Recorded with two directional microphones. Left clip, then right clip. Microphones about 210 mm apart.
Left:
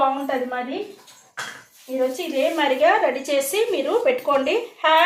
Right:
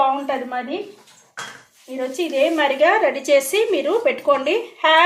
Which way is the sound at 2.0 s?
35° right (ahead or behind).